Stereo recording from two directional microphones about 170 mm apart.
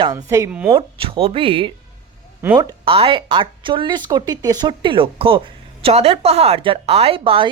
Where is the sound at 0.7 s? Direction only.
30° right (ahead or behind).